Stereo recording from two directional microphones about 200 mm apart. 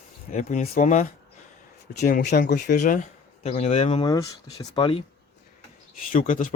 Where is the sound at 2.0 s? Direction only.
50° left (ahead or behind); by 4.0 s 30° left (ahead or behind).